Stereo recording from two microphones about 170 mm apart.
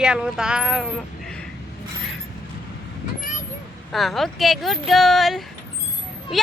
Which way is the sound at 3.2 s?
50° left (ahead or behind).